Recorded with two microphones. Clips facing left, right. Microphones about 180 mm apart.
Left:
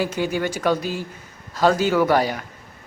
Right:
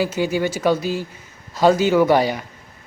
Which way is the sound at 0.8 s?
50° left (ahead or behind).